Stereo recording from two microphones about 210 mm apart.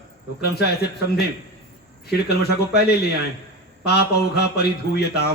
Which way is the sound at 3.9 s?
50° left (ahead or behind).